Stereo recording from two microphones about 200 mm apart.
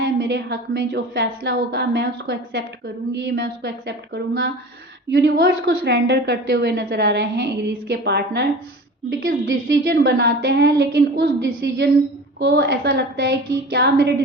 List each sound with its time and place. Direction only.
0.0 s a woman's voice: 50° right (ahead or behind)
5.5 s a woman's voice: 65° right (ahead or behind)
9.2 s a woman's voice: 45° right (ahead or behind)